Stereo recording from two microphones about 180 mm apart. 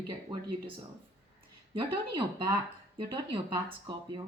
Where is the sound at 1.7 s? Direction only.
25° right (ahead or behind).